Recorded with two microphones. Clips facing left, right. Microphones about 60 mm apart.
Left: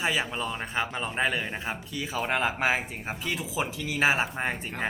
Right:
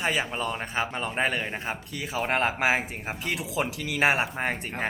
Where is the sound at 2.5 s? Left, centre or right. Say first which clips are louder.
Right 2 dB; centre.